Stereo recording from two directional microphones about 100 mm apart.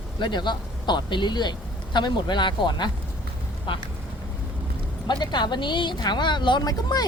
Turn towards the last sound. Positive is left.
turn(degrees=45)  # may be behind; listen again after turning